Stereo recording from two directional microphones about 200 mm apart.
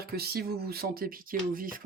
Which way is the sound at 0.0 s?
50° right (ahead or behind).